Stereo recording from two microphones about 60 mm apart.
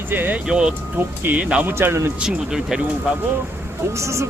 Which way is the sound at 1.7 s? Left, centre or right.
Right.